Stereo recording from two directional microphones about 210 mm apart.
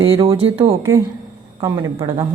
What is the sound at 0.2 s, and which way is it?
Speech, 25° right (ahead or behind).